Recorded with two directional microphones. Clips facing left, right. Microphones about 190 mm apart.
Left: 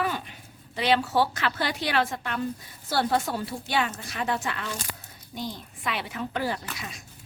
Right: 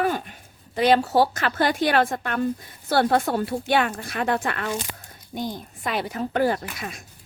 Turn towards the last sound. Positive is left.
turn(degrees=-55)  # may be behind; listen again after turning